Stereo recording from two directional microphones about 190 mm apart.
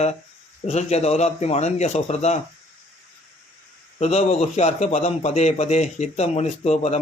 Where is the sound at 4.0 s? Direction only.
35° left (ahead or behind).